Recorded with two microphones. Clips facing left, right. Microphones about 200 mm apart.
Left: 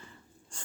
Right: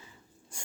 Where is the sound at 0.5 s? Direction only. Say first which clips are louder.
Right 1 dB; 10° right (ahead or behind).